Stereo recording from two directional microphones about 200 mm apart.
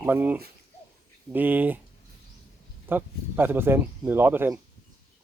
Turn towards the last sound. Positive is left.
turn(degrees=-10)  # may be behind; listen again after turning